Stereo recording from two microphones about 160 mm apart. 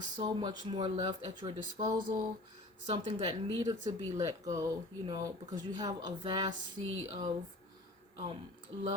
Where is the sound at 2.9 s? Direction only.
35° right (ahead or behind).